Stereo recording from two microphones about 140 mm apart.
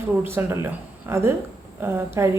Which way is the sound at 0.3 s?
20° right (ahead or behind).